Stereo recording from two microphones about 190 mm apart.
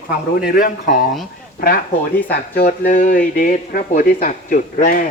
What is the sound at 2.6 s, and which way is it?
Speech, 45° left (ahead or behind).